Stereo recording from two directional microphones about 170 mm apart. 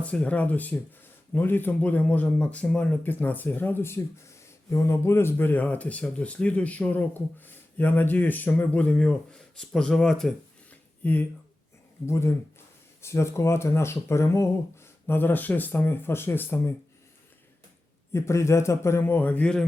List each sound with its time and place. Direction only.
0.0 s speech: 10° left (ahead or behind)
18.1 s speech: 15° left (ahead or behind)